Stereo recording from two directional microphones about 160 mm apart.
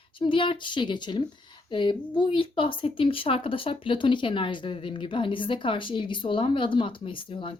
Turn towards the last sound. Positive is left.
turn(degrees=30)  # may be behind; listen again after turning